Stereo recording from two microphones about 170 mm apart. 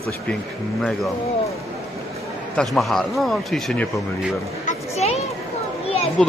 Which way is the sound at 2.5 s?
Centre (ahead or behind).